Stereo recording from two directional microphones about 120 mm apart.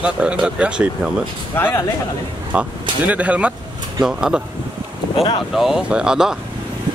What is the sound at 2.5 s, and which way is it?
Speech, 10° right (ahead or behind).